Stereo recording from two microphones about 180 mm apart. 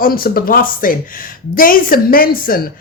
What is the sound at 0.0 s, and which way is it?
A woman's voice, 55° left (ahead or behind).